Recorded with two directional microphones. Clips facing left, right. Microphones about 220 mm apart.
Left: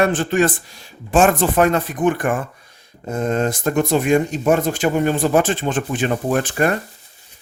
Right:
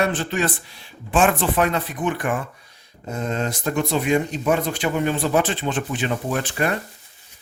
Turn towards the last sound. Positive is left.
turn(degrees=50)  # may be behind; listen again after turning